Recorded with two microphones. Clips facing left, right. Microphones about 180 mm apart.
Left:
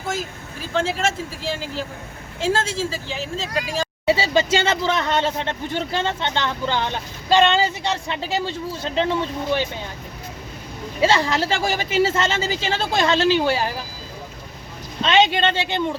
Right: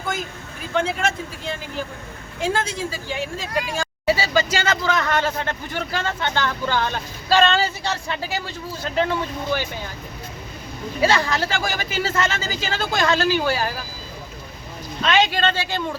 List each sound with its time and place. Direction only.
0.7 s speech: 30° left (ahead or behind)
11.0 s speech: 25° left (ahead or behind)
15.0 s speech: 25° left (ahead or behind)